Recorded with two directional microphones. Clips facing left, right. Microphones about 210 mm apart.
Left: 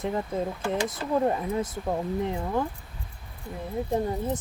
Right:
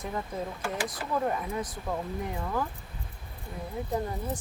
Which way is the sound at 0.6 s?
25° left (ahead or behind).